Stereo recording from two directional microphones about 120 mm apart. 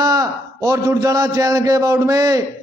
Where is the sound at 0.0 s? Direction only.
30° right (ahead or behind).